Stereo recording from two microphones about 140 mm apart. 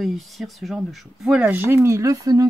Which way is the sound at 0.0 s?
Centre (ahead or behind).